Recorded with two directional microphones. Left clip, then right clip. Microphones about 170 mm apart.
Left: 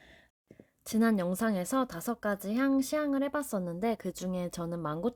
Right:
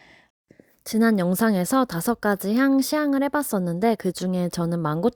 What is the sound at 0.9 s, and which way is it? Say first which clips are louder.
Speech: right 8 dB; 40° right (ahead or behind).